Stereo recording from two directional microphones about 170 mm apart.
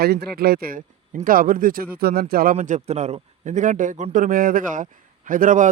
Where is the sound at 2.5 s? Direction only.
45° right (ahead or behind).